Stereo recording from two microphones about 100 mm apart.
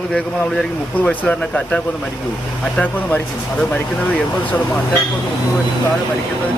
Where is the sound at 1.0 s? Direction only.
15° left (ahead or behind).